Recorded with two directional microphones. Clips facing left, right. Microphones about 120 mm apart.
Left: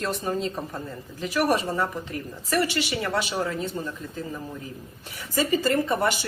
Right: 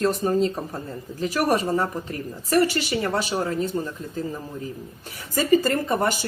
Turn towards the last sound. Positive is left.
turn(degrees=-40)  # may be behind; listen again after turning